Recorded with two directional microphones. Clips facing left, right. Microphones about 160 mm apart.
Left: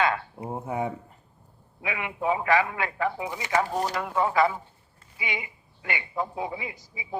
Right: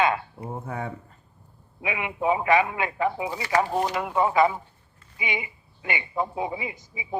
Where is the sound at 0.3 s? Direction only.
15° left (ahead or behind).